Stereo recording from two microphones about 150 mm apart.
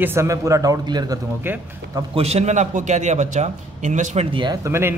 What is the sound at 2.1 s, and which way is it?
A man's voice, 45° right (ahead or behind).